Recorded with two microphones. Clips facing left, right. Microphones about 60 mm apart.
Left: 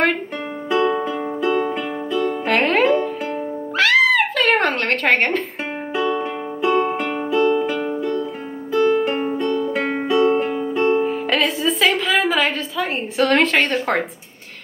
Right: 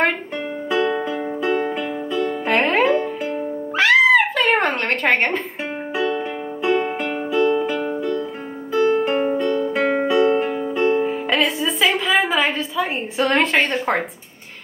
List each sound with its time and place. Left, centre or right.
0.7 s music: centre
2.4 s music: centre
3.7 s a sound: centre
6.1 s music: centre
9.8 s music: centre
11.2 s music: centre
11.8 s a sound: right
13.6 s speech: centre